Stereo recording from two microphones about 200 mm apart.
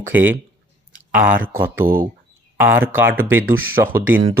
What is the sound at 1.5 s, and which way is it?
Speech, 10° right (ahead or behind).